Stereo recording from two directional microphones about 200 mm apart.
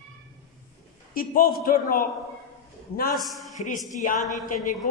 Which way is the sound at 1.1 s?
45° left (ahead or behind).